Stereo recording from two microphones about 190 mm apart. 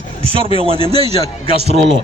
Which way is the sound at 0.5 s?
30° right (ahead or behind).